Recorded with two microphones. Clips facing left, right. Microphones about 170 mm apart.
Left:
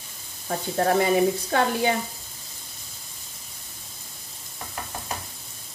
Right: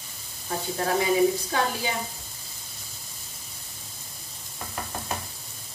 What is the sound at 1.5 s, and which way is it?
Speech, 60° left (ahead or behind).